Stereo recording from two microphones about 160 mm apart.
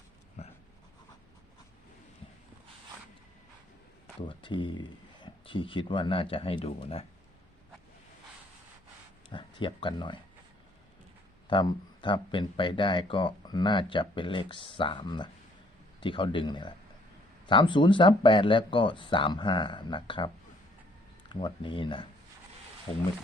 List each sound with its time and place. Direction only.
0.4 s a sound: 45° left (ahead or behind)
4.3 s speech: 30° left (ahead or behind)
9.3 s speech: 30° left (ahead or behind)
11.4 s speech: 30° left (ahead or behind)